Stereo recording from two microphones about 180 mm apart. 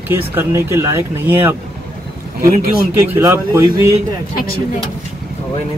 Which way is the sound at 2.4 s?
55° right (ahead or behind).